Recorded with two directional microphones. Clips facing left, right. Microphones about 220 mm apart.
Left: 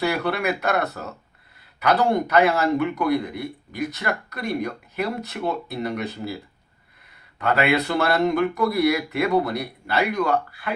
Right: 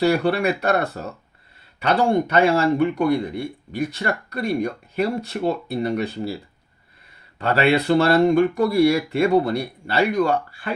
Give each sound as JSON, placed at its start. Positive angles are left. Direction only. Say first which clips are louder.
{"t": 0.0, "sound": "speech", "louder": "right 5 dB", "side_deg": -30}
{"t": 7.3, "sound": "speech", "louder": "right 2 dB", "side_deg": -30}